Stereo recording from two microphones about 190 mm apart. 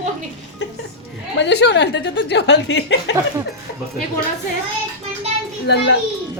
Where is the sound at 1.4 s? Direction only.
65° left (ahead or behind).